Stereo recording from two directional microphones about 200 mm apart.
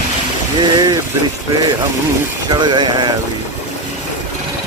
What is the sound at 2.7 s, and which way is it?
Speech, 20° right (ahead or behind).